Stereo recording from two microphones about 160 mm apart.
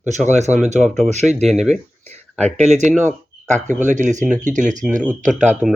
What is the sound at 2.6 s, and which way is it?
Speech, 45° right (ahead or behind).